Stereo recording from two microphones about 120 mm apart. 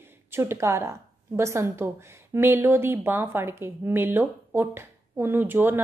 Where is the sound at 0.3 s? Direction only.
20° right (ahead or behind).